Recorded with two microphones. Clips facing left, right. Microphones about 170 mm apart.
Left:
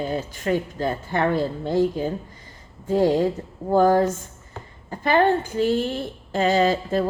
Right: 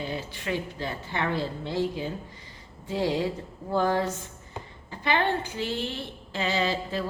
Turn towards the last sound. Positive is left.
turn(degrees=45)  # may be behind; listen again after turning